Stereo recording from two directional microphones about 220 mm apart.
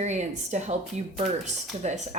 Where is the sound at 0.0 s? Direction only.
30° right (ahead or behind).